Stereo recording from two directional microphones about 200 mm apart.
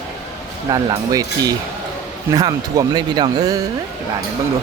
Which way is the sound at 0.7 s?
20° right (ahead or behind).